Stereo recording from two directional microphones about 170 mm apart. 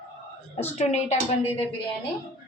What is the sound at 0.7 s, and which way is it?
Speech, 40° left (ahead or behind).